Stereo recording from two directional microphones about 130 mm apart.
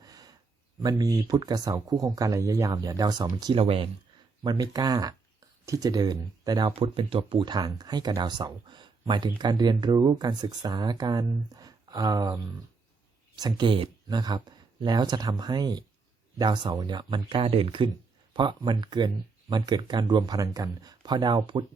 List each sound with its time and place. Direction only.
0.0 s a sound: 30° right (ahead or behind)
0.8 s speech: 30° right (ahead or behind); by 3.8 s 45° right (ahead or behind)
4.4 s speech: 30° right (ahead or behind)